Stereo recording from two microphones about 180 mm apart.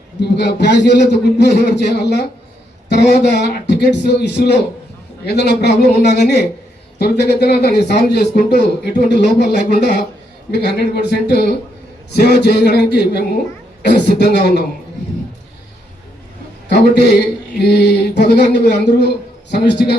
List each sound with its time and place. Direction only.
0.3 s a man's voice: 70° left (ahead or behind)
16.6 s a man's voice: 70° left (ahead or behind)